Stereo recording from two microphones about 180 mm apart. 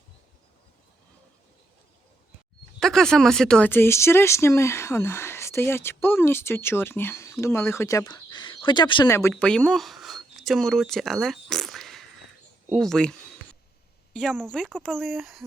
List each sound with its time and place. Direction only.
2.8 s speech: 5° left (ahead or behind); by 9.1 s 25° left (ahead or behind)
9.3 s speech: 5° left (ahead or behind)